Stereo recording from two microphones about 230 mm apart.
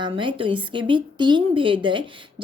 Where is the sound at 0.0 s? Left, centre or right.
Right.